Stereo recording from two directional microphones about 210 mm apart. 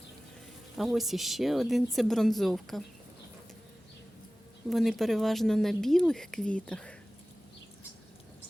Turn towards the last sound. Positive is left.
turn(degrees=5)  # may be behind; listen again after turning